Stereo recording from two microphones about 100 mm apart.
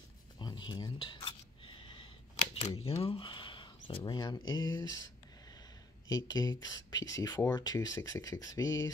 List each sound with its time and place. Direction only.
0.4 s a sound: 50° left (ahead or behind)
2.8 s speech: 85° left; by 4.9 s 45° left (ahead or behind)
6.0 s speech: 40° left (ahead or behind)